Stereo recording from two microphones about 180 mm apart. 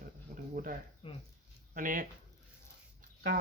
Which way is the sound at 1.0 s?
30° left (ahead or behind).